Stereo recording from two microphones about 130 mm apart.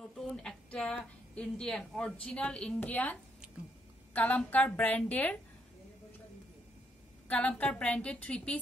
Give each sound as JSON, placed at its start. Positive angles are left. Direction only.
{"t": 0.2, "sound": "a woman's voice", "side_deg": 5}
{"t": 7.2, "sound": "a woman's voice", "side_deg": 10}